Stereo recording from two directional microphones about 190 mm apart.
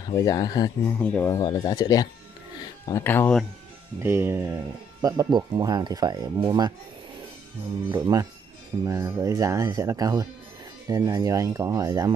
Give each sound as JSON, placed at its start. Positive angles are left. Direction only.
{"t": 0.1, "sound": "speech", "side_deg": 20}
{"t": 0.9, "sound": "speech", "side_deg": 10}
{"t": 4.0, "sound": "speech", "side_deg": -10}
{"t": 7.9, "sound": "speech", "side_deg": -20}